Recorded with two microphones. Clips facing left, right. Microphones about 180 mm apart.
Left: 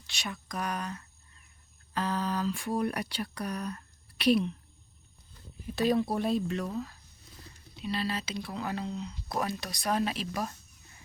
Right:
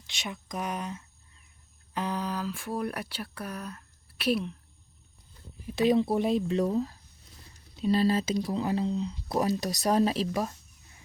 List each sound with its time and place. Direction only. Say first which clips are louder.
0.1 s speech: right 1 dB; 20° right (ahead or behind); by 4.5 s 5° right (ahead or behind)
5.7 s speech: right 3 dB; 20° right (ahead or behind)
6.6 s speech: right 8 dB; 30° right (ahead or behind)
7.8 s speech: right 8 dB; 45° right (ahead or behind)
8.5 s speech: right 4 dB; 25° right (ahead or behind)
9.4 s speech: right 7 dB; 40° right (ahead or behind)